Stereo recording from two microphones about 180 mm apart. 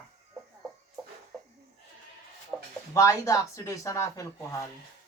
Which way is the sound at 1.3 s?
Centre (ahead or behind).